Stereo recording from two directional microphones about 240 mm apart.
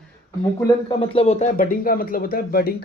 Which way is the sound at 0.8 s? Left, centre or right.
Left.